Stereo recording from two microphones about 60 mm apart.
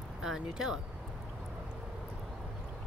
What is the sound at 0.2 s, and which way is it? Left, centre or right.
Speech, centre.